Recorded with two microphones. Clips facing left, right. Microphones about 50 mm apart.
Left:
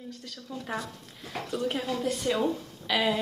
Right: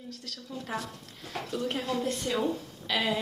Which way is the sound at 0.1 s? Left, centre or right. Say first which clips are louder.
Right 2 dB; centre.